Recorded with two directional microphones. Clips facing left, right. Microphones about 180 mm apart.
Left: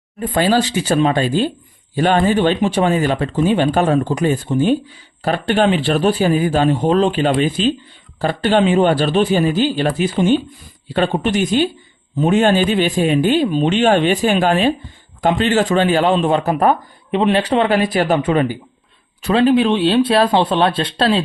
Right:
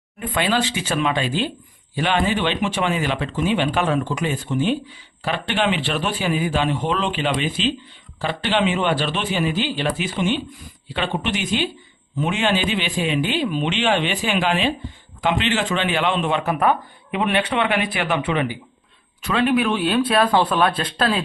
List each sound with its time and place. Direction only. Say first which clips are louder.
0.2 s speech: left 6 dB; 35° left (ahead or behind)